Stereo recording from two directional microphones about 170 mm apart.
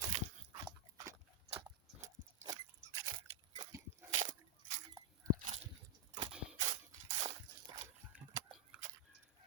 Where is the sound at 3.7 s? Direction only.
20° right (ahead or behind).